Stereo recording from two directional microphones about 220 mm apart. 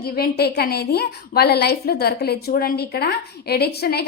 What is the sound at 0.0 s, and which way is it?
A woman's voice, 45° left (ahead or behind).